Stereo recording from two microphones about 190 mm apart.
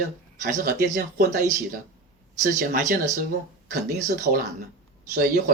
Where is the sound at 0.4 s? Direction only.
45° right (ahead or behind).